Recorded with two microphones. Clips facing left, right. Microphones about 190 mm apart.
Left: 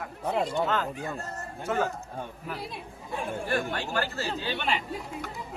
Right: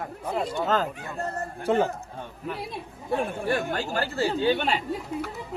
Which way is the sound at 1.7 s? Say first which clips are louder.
Right 6 dB; 30° right (ahead or behind).